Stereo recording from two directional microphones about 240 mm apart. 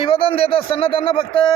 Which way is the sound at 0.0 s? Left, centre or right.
Left.